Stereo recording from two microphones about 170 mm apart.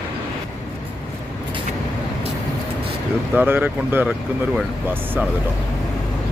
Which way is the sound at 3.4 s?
10° right (ahead or behind).